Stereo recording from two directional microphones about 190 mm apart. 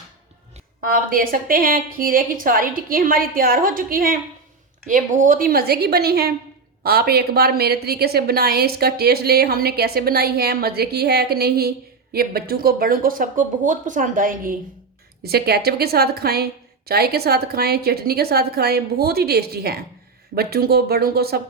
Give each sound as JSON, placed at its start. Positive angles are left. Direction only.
{"t": 0.8, "sound": "a woman's voice", "side_deg": -45}